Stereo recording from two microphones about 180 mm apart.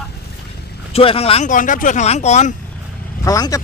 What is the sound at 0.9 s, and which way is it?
Speech, 30° left (ahead or behind).